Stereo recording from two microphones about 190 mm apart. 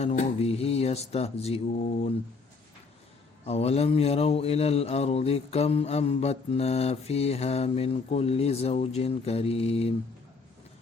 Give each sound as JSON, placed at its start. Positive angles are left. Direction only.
{"t": 0.0, "sound": "speech", "side_deg": 35}
{"t": 3.4, "sound": "speech", "side_deg": 35}